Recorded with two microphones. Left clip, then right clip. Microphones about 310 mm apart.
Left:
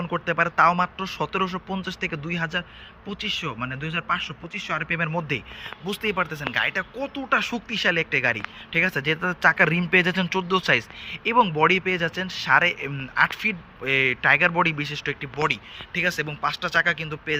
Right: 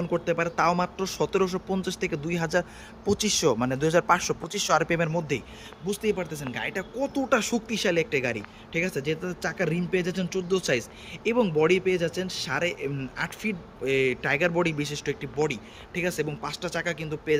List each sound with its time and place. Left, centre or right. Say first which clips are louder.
0.0 s speech: left 3 dB; centre